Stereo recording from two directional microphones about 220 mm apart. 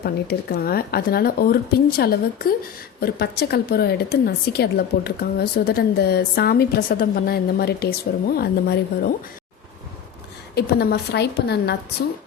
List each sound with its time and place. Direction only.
0.0 s a woman's voice: 45° left (ahead or behind)
10.5 s a woman's voice: 45° left (ahead or behind)